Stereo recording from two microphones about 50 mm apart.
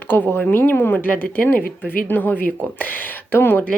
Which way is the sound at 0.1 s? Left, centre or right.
Left.